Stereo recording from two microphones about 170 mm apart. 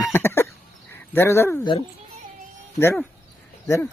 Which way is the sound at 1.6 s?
30° left (ahead or behind).